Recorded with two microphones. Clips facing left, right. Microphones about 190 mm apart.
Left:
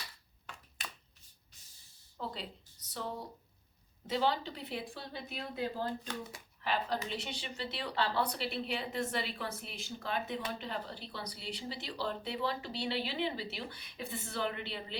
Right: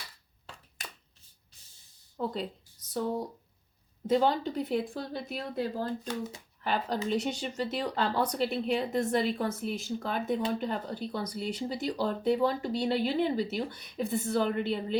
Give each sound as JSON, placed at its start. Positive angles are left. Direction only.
{"t": 2.1, "sound": "a woman's voice", "side_deg": -50}
{"t": 6.7, "sound": "speech", "side_deg": -45}